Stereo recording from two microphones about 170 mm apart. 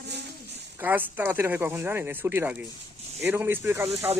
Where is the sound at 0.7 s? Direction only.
10° right (ahead or behind).